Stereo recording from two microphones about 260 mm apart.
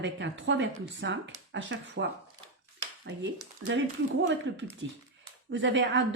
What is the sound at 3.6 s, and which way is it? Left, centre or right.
Speech, right.